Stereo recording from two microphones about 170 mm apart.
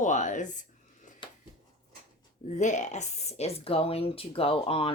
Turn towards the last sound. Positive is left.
turn(degrees=35)  # may be behind; listen again after turning